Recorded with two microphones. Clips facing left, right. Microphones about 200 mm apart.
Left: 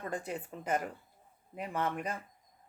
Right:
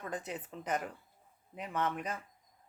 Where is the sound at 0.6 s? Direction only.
10° left (ahead or behind).